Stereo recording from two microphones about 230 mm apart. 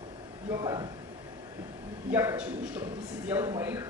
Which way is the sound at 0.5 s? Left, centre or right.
Centre.